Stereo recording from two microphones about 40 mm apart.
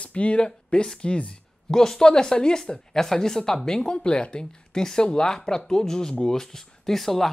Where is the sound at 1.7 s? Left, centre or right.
Centre.